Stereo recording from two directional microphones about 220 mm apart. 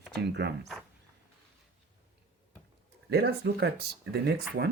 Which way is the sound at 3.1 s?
45° right (ahead or behind).